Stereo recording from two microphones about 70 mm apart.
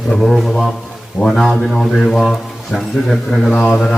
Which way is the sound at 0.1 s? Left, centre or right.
Centre.